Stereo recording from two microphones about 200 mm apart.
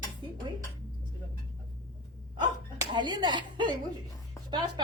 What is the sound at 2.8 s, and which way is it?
Speech, 20° right (ahead or behind).